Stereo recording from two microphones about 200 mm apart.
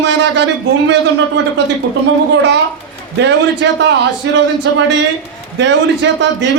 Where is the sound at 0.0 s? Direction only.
60° right (ahead or behind).